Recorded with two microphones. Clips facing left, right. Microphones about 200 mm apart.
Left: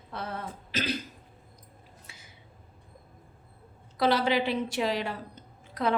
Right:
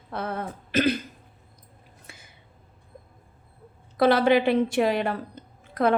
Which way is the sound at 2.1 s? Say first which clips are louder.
Right 4 dB; 50° right (ahead or behind).